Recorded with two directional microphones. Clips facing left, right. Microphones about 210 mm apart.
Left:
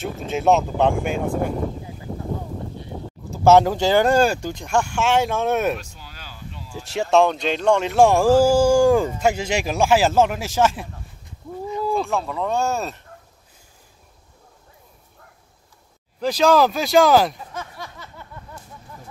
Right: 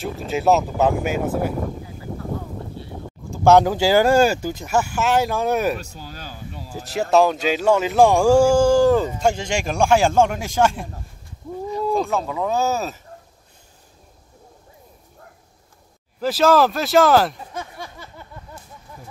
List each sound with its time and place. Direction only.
0.0 s speech: centre (ahead or behind)
3.3 s speech: centre (ahead or behind)
5.8 s a sound: 40° right (ahead or behind)
6.8 s speech: centre (ahead or behind)
16.2 s speech: 5° right (ahead or behind)